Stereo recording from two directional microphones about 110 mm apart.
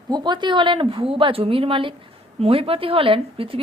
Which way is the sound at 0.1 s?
40° right (ahead or behind).